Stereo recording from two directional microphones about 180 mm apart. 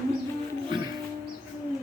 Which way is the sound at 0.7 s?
25° right (ahead or behind).